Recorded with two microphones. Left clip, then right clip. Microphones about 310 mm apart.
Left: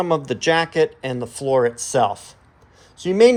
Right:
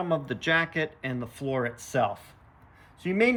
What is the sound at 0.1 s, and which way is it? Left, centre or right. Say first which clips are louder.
Speech: left 4 dB; centre.